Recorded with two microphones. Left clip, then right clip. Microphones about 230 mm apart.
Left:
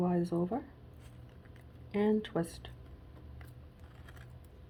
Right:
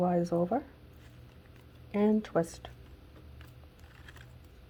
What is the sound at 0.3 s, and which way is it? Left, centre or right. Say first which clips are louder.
Speech: right 5 dB; right.